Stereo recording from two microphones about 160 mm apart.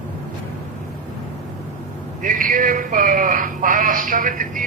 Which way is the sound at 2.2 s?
60° right (ahead or behind).